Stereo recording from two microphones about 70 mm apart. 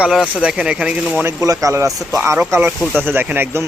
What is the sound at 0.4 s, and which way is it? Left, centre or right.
Speech, centre.